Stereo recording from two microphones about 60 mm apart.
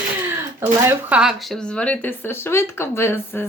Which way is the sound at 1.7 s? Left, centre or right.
Centre.